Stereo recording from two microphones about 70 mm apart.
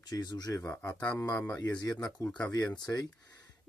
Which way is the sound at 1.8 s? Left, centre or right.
Left.